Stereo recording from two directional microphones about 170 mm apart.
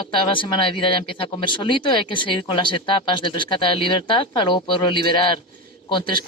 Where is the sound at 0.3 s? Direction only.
30° left (ahead or behind).